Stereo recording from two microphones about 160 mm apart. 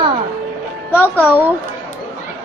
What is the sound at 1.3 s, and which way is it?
Speech, 10° right (ahead or behind).